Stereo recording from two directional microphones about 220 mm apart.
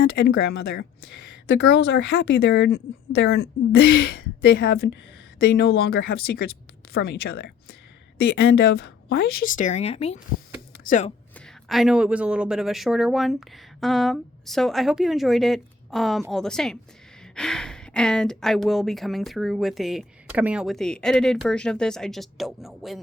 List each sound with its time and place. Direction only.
0.0 s a woman's voice: 50° left (ahead or behind)
11.3 s speech: centre (ahead or behind)